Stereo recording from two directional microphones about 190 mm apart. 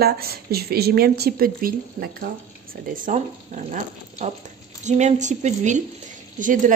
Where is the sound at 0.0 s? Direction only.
55° right (ahead or behind).